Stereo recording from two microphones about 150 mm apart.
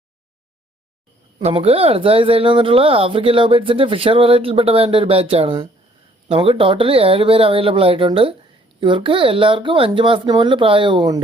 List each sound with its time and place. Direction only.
1.4 s speech: 45° right (ahead or behind)